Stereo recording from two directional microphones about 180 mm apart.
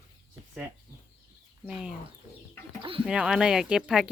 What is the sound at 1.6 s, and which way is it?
Speech, 5° right (ahead or behind).